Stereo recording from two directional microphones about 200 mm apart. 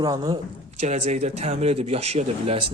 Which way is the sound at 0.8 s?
35° right (ahead or behind).